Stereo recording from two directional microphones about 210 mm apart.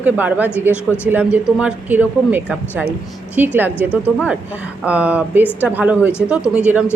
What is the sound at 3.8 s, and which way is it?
Speech, 10° left (ahead or behind).